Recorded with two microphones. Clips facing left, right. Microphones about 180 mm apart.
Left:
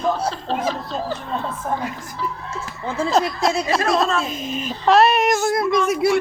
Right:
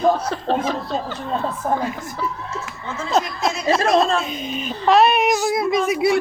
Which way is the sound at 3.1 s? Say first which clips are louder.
Left 1 dB; centre (ahead or behind).